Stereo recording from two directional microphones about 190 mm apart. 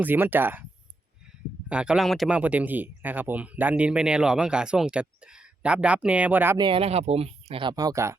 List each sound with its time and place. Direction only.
0.0 s speech: 10° right (ahead or behind)
1.7 s speech: 5° right (ahead or behind)
6.6 s speech: 25° right (ahead or behind)